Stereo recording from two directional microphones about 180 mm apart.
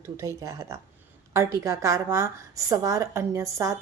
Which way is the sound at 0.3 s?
15° right (ahead or behind).